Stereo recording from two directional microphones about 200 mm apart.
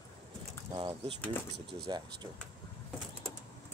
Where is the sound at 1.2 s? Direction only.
Centre (ahead or behind).